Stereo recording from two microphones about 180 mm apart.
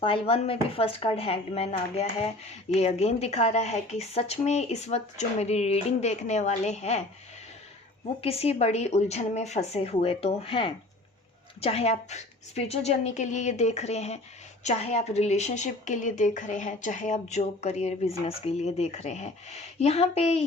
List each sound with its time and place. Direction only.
0.0 s speech: 30° left (ahead or behind)
8.2 s speech: 35° left (ahead or behind)